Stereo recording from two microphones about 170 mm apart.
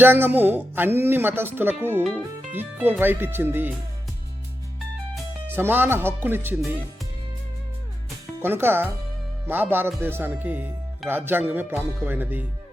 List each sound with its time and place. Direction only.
0.0 s speech: 10° right (ahead or behind)
5.5 s speech: 10° right (ahead or behind)
8.4 s speech: 15° right (ahead or behind)